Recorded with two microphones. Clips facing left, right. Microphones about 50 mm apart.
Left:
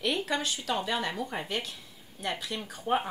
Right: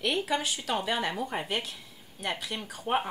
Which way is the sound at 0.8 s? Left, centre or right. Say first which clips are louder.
Right 1 dB; centre.